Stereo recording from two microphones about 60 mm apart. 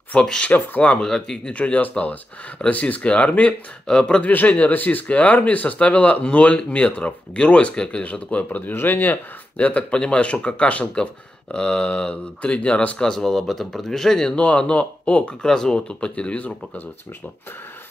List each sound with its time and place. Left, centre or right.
0.2 s speech: centre
0.5 s speech: left
1.0 s speech: centre
1.5 s speech: left
4.2 s speech: left